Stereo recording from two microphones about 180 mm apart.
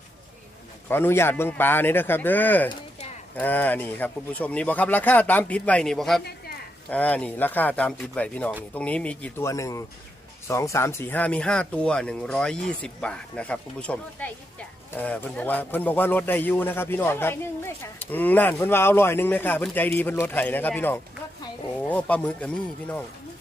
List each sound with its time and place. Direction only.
0.9 s a man's voice: 10° left (ahead or behind)